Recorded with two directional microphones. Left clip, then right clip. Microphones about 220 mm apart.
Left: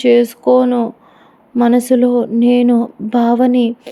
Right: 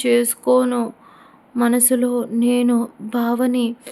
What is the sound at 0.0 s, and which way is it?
Speech, 15° left (ahead or behind).